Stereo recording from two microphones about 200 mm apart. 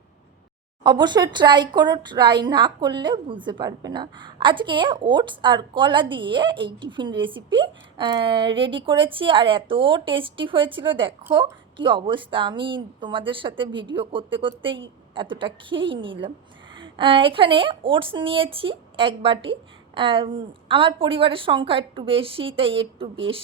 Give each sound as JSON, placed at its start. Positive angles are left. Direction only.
{"t": 0.9, "sound": "speech", "side_deg": -20}